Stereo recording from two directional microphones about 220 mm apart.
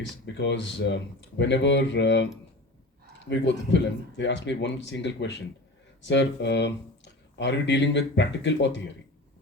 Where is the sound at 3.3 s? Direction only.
55° left (ahead or behind).